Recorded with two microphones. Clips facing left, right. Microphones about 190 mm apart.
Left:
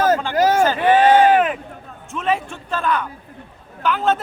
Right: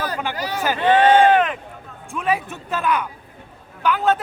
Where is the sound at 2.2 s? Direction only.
15° right (ahead or behind).